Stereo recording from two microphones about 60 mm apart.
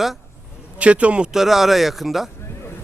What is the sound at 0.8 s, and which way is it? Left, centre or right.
Speech, right.